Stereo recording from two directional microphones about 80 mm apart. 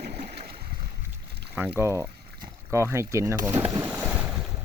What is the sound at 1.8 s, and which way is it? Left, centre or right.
Speech, right.